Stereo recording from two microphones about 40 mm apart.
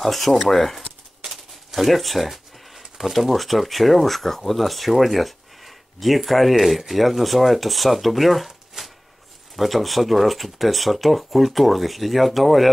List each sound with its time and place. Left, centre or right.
0.0 s speech: centre
1.7 s a sound: centre
3.0 s speech: centre
8.5 s shuffling cards: centre
9.6 s speech: centre